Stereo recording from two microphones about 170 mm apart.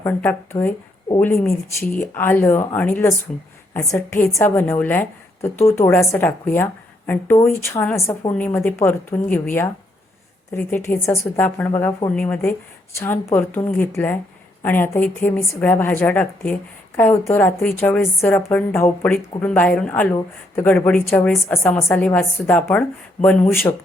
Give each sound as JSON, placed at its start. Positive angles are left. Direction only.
{"t": 0.0, "sound": "a woman's voice", "side_deg": 15}